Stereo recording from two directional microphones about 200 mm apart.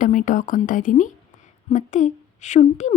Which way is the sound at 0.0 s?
40° left (ahead or behind).